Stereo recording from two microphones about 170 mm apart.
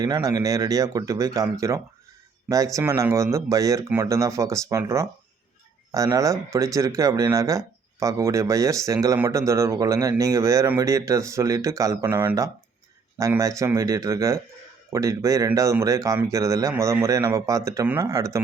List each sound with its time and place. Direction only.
0.0 s speech: 20° right (ahead or behind)